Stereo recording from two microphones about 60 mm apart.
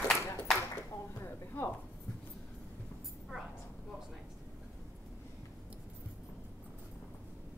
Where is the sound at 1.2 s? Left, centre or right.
Left.